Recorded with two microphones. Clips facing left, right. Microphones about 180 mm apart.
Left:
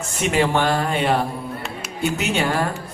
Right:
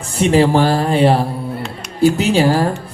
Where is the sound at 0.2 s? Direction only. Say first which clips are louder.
Right 7 dB; 30° right (ahead or behind).